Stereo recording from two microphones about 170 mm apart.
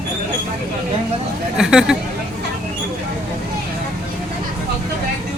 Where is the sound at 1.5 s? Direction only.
5° right (ahead or behind).